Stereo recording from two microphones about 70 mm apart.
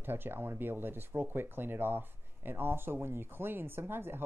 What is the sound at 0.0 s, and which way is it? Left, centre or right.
Speech, right.